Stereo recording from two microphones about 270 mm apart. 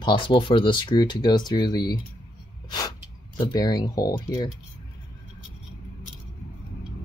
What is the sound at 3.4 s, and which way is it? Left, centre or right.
Speech, centre.